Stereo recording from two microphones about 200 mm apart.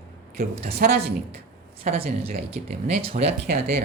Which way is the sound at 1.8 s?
30° right (ahead or behind).